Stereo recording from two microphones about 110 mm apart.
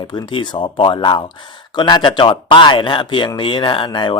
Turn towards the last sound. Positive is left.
turn(degrees=45)  # may be behind; listen again after turning